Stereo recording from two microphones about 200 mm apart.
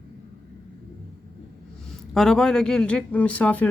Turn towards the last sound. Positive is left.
turn(degrees=5)  # may be behind; listen again after turning